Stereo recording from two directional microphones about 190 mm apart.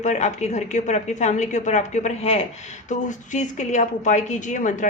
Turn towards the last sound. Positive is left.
turn(degrees=40)  # may be behind; listen again after turning